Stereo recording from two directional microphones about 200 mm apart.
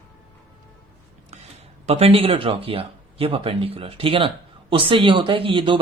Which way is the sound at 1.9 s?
30° right (ahead or behind).